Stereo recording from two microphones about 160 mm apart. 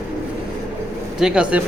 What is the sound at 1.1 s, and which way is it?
Speech, 5° right (ahead or behind).